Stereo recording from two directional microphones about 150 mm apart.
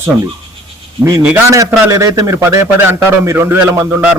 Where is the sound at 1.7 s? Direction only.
20° right (ahead or behind).